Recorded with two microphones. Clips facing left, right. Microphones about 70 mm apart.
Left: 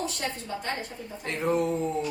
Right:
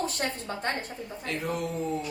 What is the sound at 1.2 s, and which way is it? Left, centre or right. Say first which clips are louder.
Speech: left 5 dB; left.